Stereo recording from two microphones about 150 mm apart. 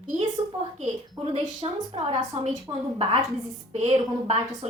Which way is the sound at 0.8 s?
45° right (ahead or behind).